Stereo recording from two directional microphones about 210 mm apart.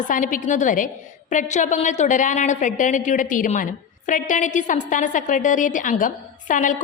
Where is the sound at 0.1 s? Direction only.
40° left (ahead or behind).